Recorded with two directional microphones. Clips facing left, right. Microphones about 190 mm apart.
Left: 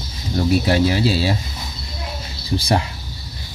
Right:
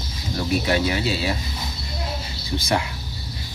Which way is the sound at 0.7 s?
35° left (ahead or behind).